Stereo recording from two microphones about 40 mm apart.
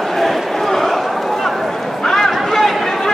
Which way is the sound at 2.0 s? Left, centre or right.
Centre.